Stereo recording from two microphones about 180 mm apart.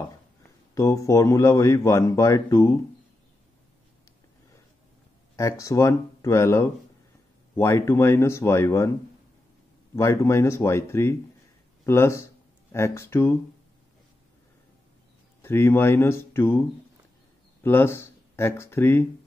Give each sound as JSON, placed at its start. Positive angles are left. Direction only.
{"t": 0.7, "sound": "speech", "side_deg": 15}
{"t": 5.3, "sound": "speech", "side_deg": 15}
{"t": 9.9, "sound": "speech", "side_deg": 15}
{"t": 15.4, "sound": "speech", "side_deg": 15}
{"t": 17.6, "sound": "speech", "side_deg": 15}